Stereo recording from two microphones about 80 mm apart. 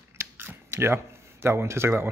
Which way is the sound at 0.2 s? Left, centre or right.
Right.